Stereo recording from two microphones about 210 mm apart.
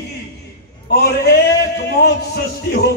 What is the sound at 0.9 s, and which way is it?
A man's voice, 50° left (ahead or behind).